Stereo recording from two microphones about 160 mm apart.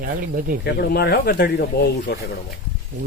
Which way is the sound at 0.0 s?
65° right (ahead or behind).